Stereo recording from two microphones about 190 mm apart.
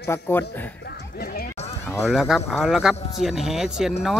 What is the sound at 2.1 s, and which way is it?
Speech, centre (ahead or behind).